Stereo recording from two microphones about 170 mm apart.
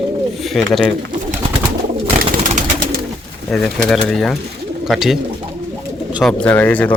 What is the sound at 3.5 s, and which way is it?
Speech, centre (ahead or behind).